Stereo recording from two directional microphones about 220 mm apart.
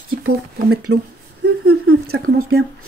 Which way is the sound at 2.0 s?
45° right (ahead or behind).